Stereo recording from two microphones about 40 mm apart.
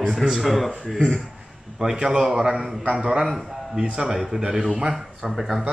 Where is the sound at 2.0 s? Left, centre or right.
Centre.